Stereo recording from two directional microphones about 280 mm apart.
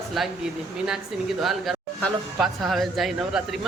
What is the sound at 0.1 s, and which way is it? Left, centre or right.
Speech, centre.